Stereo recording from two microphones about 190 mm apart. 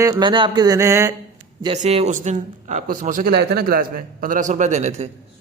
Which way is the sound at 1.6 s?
35° right (ahead or behind).